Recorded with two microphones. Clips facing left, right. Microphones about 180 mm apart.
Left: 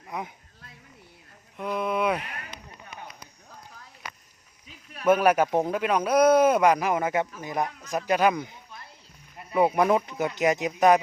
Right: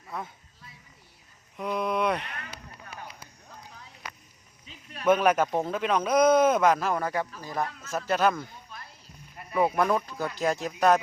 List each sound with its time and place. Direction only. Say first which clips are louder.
0.1 s speech: left 2 dB; 15° left (ahead or behind)
1.5 s speech: left 1 dB; centre (ahead or behind)
3.1 s a sound: even; centre (ahead or behind)
4.6 s speech: left 1 dB; 5° left (ahead or behind)